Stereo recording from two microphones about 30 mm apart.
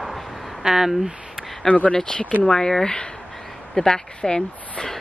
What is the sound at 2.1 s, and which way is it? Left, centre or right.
Speech, left.